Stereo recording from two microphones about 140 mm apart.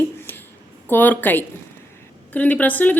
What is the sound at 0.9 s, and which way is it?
A woman's voice, 15° left (ahead or behind).